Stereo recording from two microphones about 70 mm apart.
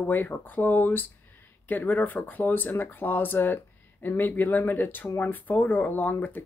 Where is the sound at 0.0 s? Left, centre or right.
Left.